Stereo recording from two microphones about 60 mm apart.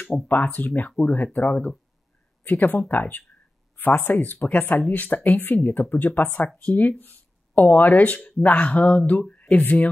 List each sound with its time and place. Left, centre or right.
0.3 s speech: left
6.5 s speech: left